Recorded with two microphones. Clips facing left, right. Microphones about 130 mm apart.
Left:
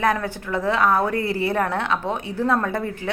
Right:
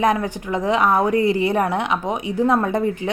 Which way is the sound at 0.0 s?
20° right (ahead or behind).